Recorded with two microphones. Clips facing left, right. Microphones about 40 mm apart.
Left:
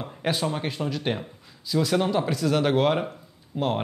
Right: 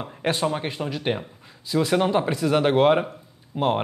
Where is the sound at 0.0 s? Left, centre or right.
Centre.